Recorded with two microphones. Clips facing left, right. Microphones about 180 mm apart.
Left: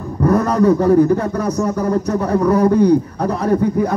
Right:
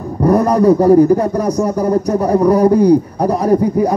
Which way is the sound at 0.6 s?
35° right (ahead or behind).